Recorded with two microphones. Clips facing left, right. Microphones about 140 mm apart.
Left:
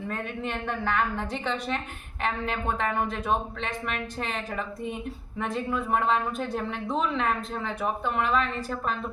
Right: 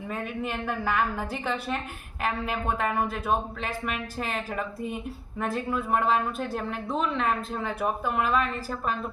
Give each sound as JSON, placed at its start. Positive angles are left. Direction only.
{"t": 0.1, "sound": "speech", "side_deg": -5}